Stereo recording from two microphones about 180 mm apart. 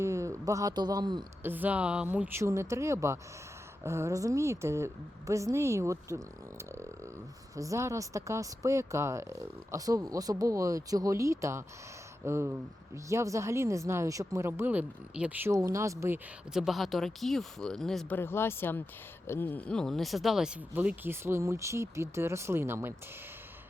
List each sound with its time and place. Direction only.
0.0 s speech: 15° right (ahead or behind)
1.5 s speech: 10° right (ahead or behind)
7.5 s speech: 20° right (ahead or behind)
16.5 s speech: centre (ahead or behind)
18.2 s speech: 15° left (ahead or behind); by 23.0 s 15° right (ahead or behind)